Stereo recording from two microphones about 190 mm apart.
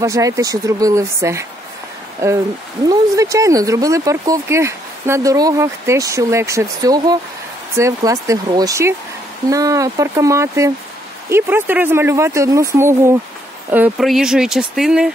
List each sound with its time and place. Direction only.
0.0 s speech: 15° right (ahead or behind)